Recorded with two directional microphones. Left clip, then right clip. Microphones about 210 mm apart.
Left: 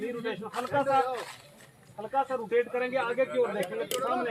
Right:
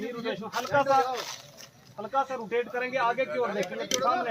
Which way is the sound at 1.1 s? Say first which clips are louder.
Right 2 dB; 35° right (ahead or behind).